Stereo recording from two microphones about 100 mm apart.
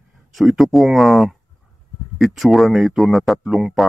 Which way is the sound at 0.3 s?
Centre (ahead or behind).